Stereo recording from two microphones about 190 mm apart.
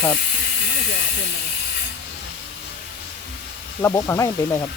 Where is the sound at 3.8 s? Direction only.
15° left (ahead or behind).